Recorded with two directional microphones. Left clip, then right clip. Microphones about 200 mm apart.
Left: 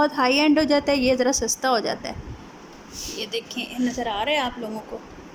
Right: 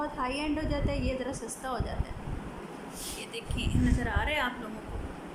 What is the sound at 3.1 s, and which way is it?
A woman's voice, 25° left (ahead or behind).